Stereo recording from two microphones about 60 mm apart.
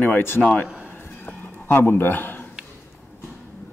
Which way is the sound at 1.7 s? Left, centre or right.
Left.